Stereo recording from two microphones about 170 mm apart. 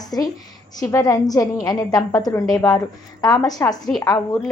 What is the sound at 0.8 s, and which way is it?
A woman's voice, 20° left (ahead or behind).